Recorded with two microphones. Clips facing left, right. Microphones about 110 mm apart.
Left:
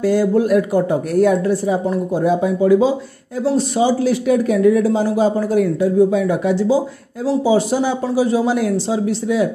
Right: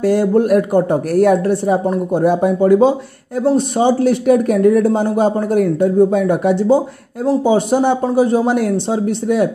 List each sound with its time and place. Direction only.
0.0 s speech: 65° right (ahead or behind)
0.3 s speech: 50° right (ahead or behind)
1.1 s speech: 65° right (ahead or behind)